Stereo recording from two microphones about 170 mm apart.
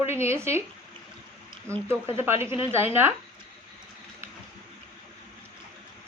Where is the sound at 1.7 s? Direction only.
15° right (ahead or behind).